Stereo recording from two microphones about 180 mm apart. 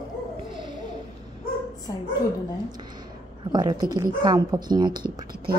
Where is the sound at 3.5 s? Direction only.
20° right (ahead or behind).